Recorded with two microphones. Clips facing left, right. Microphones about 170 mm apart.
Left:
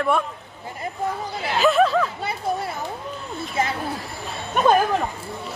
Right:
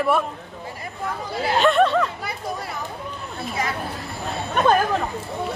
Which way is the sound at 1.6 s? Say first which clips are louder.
Left 1 dB; centre (ahead or behind).